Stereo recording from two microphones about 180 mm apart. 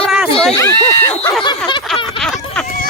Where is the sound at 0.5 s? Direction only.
15° left (ahead or behind).